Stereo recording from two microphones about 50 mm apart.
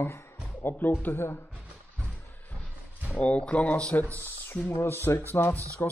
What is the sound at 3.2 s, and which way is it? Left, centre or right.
Speech, left.